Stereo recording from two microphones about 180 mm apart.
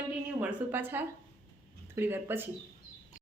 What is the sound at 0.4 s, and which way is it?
Speech, 10° right (ahead or behind).